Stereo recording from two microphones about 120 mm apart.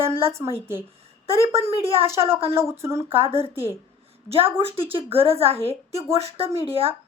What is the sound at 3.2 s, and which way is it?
A woman's voice, 50° right (ahead or behind).